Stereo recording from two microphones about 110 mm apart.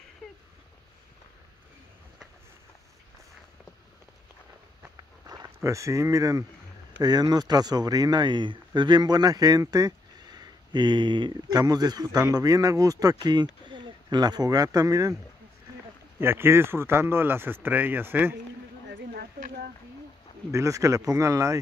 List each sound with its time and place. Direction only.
4.9 s a sound: 35° right (ahead or behind)
7.0 s speech: 40° right (ahead or behind)
16.2 s speech: 20° right (ahead or behind)
20.5 s speech: 30° right (ahead or behind)